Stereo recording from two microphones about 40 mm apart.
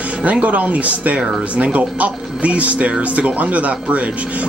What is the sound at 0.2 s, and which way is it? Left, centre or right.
Speech, right.